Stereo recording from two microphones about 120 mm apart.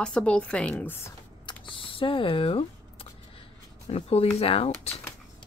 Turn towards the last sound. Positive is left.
turn(degrees=55)  # may be behind; listen again after turning